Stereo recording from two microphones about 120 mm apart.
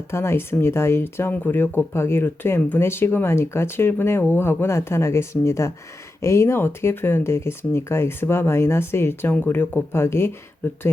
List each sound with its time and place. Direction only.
0.1 s speech: 20° left (ahead or behind)